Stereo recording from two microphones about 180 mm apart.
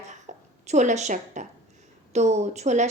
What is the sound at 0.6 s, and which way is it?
A woman's voice, 40° right (ahead or behind).